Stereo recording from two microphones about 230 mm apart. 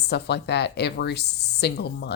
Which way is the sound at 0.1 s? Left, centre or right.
Left.